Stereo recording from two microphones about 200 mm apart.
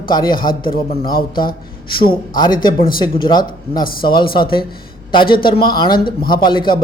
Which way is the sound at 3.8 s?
45° left (ahead or behind).